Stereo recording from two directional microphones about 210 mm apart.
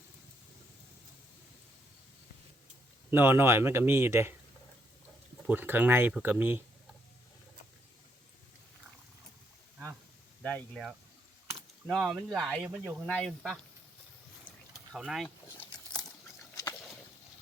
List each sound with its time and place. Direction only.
3.1 s speech: 10° right (ahead or behind)
5.5 s speech: 10° right (ahead or behind)
10.4 s speech: 5° left (ahead or behind)
13.1 s speech: 5° left (ahead or behind)
14.7 s a sound: centre (ahead or behind)
16.6 s rowboat: 15° left (ahead or behind)